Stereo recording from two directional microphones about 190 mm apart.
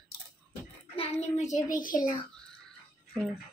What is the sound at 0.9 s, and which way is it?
Child singing, 35° left (ahead or behind).